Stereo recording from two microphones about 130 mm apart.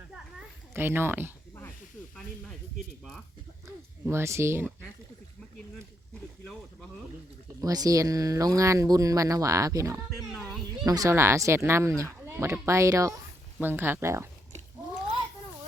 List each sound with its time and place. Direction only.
0.7 s speech: 15° right (ahead or behind)
4.0 s speech: 20° right (ahead or behind)
7.6 s speech: 30° right (ahead or behind)